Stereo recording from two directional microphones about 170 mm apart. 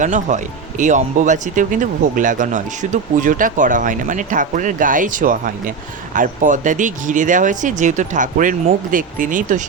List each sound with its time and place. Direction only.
0.0 s speech: 45° right (ahead or behind)